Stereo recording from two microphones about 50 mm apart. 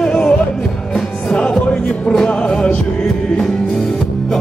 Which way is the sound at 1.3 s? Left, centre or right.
Centre.